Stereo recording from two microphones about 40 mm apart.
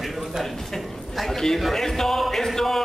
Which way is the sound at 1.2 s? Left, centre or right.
Centre.